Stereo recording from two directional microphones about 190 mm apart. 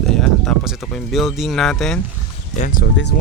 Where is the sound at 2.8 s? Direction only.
65° left (ahead or behind).